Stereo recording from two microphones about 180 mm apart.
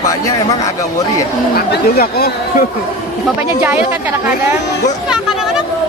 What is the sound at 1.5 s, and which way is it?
Speech, 60° left (ahead or behind).